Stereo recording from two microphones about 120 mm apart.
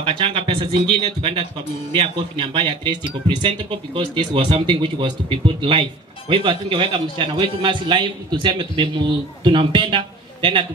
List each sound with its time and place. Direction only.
0.0 s speech: 45° right (ahead or behind)